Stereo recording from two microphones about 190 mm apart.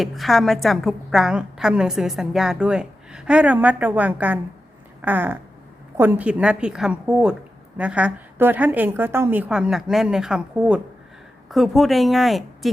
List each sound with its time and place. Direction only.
0.0 s a woman's voice: centre (ahead or behind)